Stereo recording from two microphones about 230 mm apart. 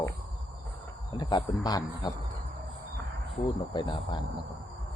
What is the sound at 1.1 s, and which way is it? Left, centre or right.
Speech, centre.